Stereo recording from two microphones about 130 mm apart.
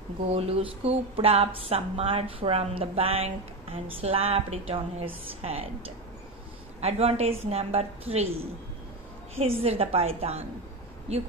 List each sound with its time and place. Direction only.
0.3 s speech: 50° right (ahead or behind)
9.4 s speech: 50° right (ahead or behind)